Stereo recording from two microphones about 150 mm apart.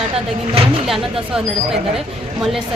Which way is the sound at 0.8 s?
Centre (ahead or behind).